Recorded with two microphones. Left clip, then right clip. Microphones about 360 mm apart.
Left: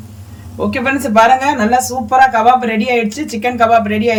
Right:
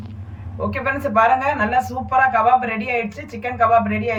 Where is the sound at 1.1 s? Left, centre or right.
Left.